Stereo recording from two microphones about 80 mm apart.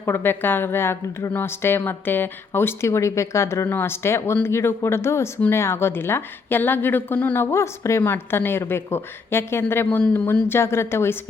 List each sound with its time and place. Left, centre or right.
0.0 s a woman's voice: left
7.3 s a woman's voice: left